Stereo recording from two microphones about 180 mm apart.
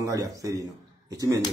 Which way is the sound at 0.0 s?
20° right (ahead or behind).